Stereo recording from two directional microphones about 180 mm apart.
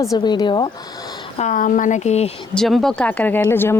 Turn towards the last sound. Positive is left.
turn(degrees=10)  # may be behind; listen again after turning